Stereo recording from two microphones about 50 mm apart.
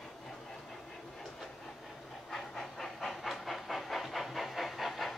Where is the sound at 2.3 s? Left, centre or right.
Centre.